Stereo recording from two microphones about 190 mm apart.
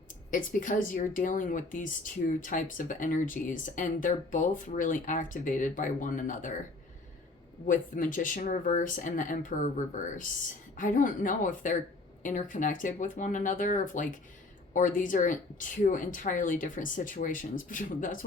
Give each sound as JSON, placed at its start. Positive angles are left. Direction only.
{"t": 0.3, "sound": "speech", "side_deg": 45}
{"t": 7.6, "sound": "speech", "side_deg": 45}